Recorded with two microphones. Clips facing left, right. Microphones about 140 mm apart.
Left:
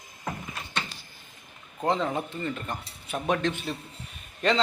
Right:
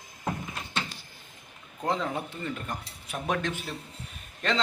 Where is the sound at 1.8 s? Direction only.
Centre (ahead or behind).